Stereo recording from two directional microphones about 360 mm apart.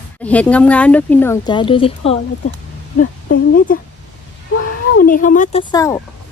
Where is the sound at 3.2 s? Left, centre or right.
Left.